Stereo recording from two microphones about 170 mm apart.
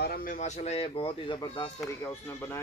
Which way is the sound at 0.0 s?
55° left (ahead or behind).